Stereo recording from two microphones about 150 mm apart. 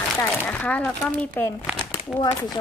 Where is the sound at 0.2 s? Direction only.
15° left (ahead or behind).